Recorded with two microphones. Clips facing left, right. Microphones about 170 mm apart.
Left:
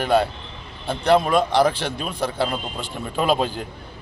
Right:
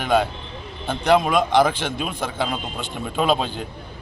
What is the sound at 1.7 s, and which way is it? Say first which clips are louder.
Speech: even; 35° left (ahead or behind).